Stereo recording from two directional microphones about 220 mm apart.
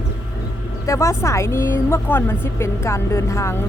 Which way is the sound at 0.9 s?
15° left (ahead or behind).